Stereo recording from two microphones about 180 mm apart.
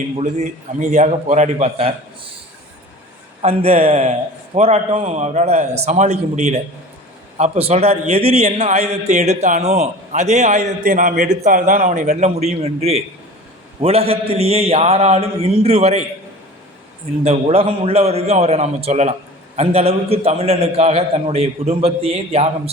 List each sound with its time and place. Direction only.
0.2 s a man's voice: 40° right (ahead or behind)
3.4 s a man's voice: 35° right (ahead or behind)
17.2 s a man's voice: 35° right (ahead or behind)